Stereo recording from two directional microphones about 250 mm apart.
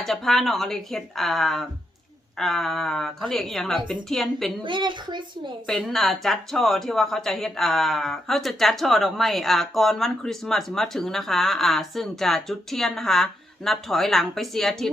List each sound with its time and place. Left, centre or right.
0.0 s speech: centre
4.6 s a woman's voice: centre
5.6 s speech: centre